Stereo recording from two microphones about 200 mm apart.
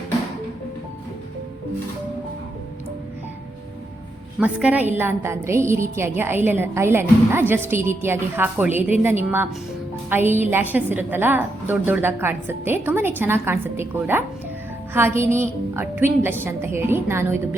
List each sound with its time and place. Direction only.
4.4 s a woman's voice: 5° right (ahead or behind)